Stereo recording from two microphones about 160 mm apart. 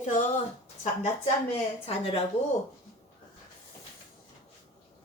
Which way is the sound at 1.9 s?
35° left (ahead or behind).